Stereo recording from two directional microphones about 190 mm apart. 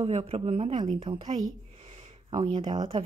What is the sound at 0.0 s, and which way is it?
A woman's voice, 30° right (ahead or behind).